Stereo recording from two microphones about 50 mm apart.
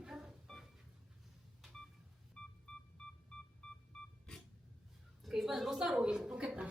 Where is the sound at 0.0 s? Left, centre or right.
Centre.